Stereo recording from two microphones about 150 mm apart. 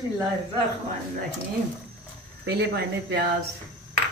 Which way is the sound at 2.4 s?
90° right.